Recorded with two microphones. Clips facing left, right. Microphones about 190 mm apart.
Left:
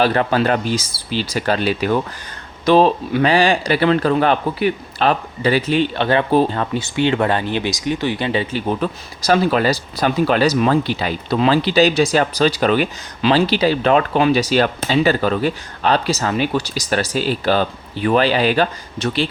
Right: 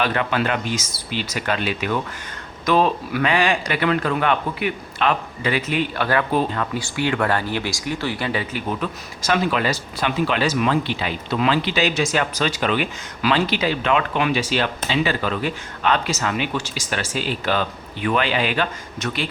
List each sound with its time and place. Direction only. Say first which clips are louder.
0.0 s speech: left 5 dB; 35° left (ahead or behind)